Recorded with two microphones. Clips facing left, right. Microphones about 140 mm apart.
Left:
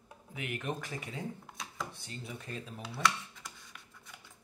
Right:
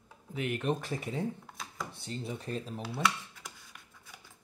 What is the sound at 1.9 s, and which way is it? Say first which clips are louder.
Speech: right 6 dB; 30° right (ahead or behind).